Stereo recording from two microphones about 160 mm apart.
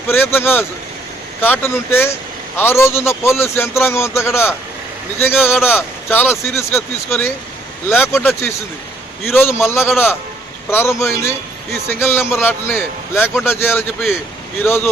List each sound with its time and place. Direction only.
0.1 s a man's voice: 15° left (ahead or behind)